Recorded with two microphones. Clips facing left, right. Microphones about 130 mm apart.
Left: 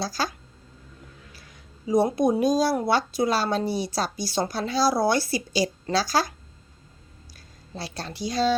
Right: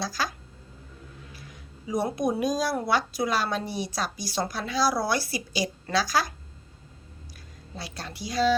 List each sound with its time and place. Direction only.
0.0 s a woman's voice: 30° left (ahead or behind)
1.9 s a woman's voice: 25° left (ahead or behind)
7.8 s a woman's voice: 30° left (ahead or behind)